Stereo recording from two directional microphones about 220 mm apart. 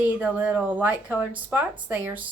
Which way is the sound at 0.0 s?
5° right (ahead or behind).